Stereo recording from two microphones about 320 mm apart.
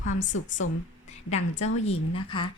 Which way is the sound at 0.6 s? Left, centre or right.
Left.